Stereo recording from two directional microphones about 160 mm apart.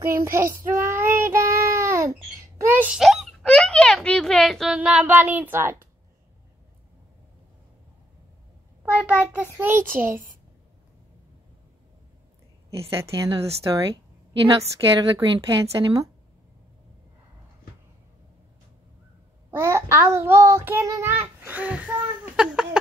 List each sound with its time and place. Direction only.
0.1 s child singing: 15° right (ahead or behind)
2.6 s a sound: 10° right (ahead or behind)
8.8 s child singing: 10° right (ahead or behind)
12.9 s a woman's voice: 20° right (ahead or behind)
19.5 s child singing: 15° right (ahead or behind)